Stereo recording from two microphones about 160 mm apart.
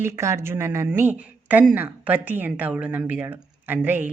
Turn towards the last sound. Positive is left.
turn(degrees=-10)  # may be behind; listen again after turning